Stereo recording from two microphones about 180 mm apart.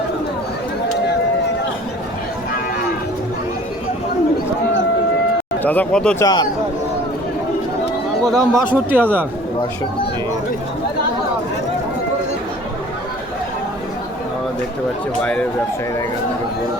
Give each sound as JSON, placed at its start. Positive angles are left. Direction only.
{"t": 5.6, "sound": "speech", "side_deg": 10}
{"t": 6.2, "sound": "speech", "side_deg": 25}
{"t": 8.2, "sound": "speech", "side_deg": 0}
{"t": 8.5, "sound": "speech", "side_deg": -10}
{"t": 15.2, "sound": "speech", "side_deg": 5}